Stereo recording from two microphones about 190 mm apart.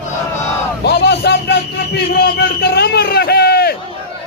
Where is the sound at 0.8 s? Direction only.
60° left (ahead or behind).